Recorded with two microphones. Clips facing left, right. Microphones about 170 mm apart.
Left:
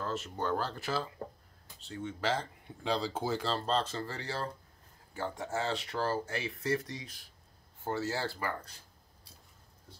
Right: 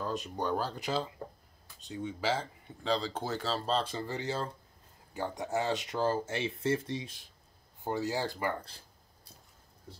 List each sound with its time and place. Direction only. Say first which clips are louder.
0.0 s speech: right 1 dB; 15° right (ahead or behind)
7.8 s speech: right 2 dB; 15° right (ahead or behind)